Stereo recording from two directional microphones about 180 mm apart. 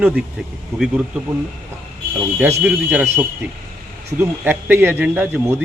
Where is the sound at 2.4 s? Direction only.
15° right (ahead or behind).